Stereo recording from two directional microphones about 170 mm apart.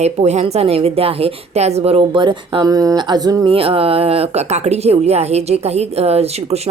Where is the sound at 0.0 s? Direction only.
40° right (ahead or behind).